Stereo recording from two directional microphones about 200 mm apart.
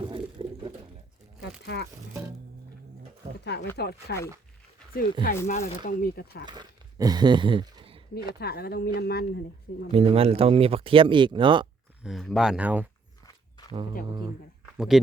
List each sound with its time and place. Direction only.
0.1 s pigeon: 25° right (ahead or behind)
1.6 s speech: 55° left (ahead or behind)
3.4 s speech: 55° left (ahead or behind)
5.5 s speech: 35° left (ahead or behind)
6.5 s speech: 20° right (ahead or behind)
8.1 s speech: 50° left (ahead or behind)
9.9 s speech: 30° right (ahead or behind)
12.0 s speech: centre (ahead or behind)
13.2 s walk: 20° left (ahead or behind)
14.8 s speech: centre (ahead or behind)